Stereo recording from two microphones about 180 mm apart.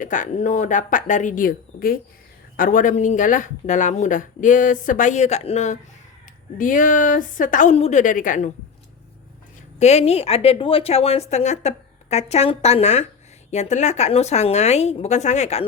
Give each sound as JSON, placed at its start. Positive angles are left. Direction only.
{"t": 0.0, "sound": "speech", "side_deg": 45}
{"t": 9.7, "sound": "a woman's voice", "side_deg": 40}